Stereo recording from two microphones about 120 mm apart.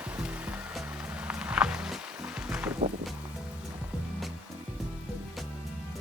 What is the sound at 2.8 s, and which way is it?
Music, 65° right (ahead or behind).